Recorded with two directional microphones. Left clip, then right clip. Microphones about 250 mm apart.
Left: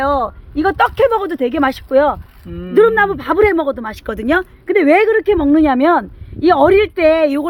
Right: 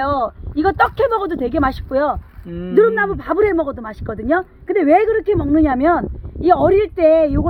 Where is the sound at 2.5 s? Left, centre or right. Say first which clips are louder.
Right 1 dB; right.